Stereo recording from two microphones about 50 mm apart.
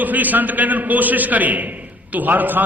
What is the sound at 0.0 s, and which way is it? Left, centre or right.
A man's voice, right.